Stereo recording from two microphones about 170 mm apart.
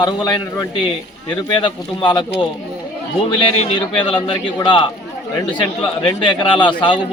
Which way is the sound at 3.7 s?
30° left (ahead or behind).